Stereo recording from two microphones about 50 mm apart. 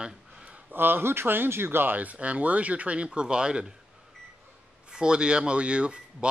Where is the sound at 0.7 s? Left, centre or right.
Right.